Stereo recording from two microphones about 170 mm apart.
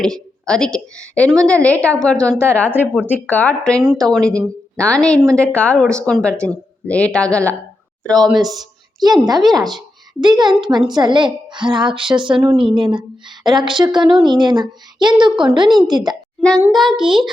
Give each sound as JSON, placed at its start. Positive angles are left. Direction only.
{"t": 0.0, "sound": "a woman's voice", "side_deg": 5}
{"t": 9.0, "sound": "a woman's voice", "side_deg": -25}
{"t": 16.7, "sound": "a woman's voice", "side_deg": 0}